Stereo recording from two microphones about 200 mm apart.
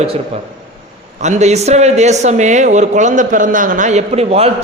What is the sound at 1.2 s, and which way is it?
Speech, 35° right (ahead or behind).